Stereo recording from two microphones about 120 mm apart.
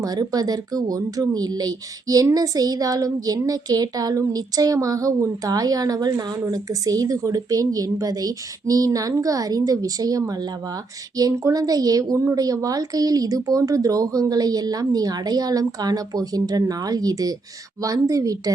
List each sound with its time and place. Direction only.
0.0 s a woman's voice: 35° right (ahead or behind)